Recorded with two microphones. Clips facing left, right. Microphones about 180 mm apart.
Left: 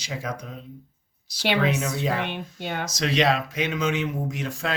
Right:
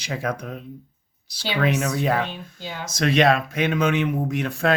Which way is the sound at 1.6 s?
60° right (ahead or behind).